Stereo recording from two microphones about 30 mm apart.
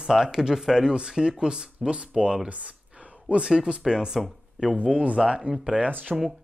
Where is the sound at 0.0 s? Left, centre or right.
Centre; by 2.3 s right.